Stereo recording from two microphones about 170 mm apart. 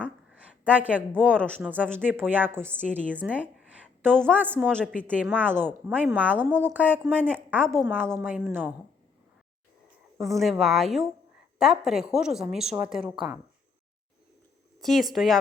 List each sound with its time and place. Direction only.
0.3 s a woman's voice: 10° right (ahead or behind)
1.2 s a woman's voice: 5° left (ahead or behind)
1.8 s a woman's voice: 10° right (ahead or behind)
3.1 s a sound: 10° right (ahead or behind)
4.3 s a woman's voice: 10° right (ahead or behind)
10.2 s a woman's voice: centre (ahead or behind)
14.8 s a woman's voice: centre (ahead or behind)